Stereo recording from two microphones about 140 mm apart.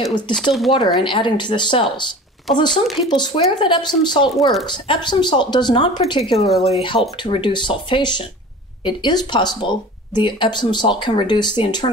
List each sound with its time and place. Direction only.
0.4 s speech: centre (ahead or behind)
0.7 s speech: 35° left (ahead or behind)